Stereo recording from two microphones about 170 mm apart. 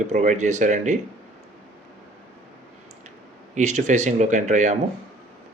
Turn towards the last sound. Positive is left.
turn(degrees=-45)  # may be behind; listen again after turning